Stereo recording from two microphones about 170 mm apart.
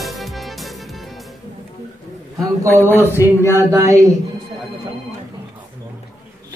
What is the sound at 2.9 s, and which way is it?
Speech, 15° left (ahead or behind).